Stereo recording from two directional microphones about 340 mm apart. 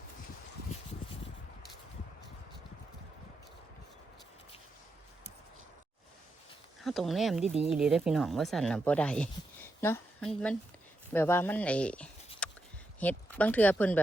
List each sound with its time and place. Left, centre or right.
6.8 s speech: centre
12.4 s a sound: centre
13.0 s speech: centre